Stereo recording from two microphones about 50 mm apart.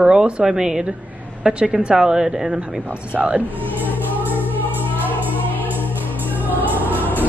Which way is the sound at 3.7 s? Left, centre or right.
Right.